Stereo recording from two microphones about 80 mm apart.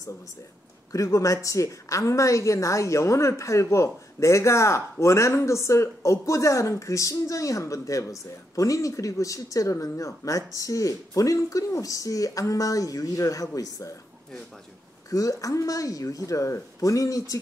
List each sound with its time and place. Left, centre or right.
0.9 s a woman's voice: left
15.0 s speech: left